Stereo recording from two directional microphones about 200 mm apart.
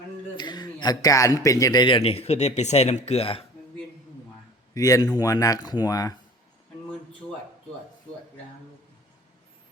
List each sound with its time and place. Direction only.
0.3 s a man's voice: 20° left (ahead or behind)
4.7 s speech: 15° left (ahead or behind)